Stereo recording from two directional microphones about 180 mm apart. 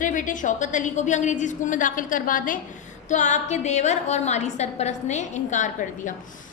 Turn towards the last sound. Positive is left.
turn(degrees=45)  # may be behind; listen again after turning